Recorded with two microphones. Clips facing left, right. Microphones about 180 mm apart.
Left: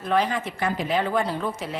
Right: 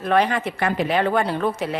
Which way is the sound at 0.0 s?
65° right (ahead or behind).